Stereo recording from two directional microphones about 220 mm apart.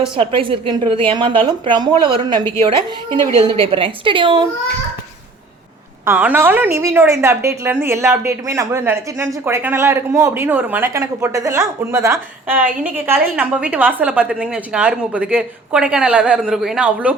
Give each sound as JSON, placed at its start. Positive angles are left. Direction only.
{"t": 0.2, "sound": "a woman's voice", "side_deg": -25}
{"t": 6.1, "sound": "a woman's voice", "side_deg": -10}